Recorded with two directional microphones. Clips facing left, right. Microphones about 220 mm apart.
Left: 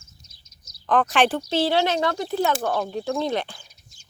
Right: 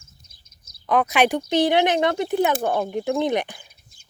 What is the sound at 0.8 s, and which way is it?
Speech, 10° right (ahead or behind).